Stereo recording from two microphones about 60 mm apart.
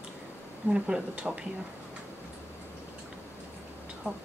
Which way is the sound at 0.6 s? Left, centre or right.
Centre.